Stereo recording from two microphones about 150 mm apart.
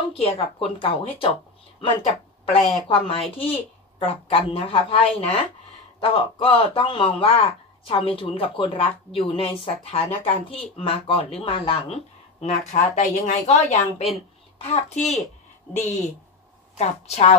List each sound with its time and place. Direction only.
0.1 s a woman's voice: 40° left (ahead or behind)
16.7 s a woman's voice: 45° left (ahead or behind)